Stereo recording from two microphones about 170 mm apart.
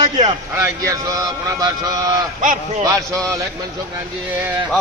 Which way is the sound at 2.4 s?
50° right (ahead or behind).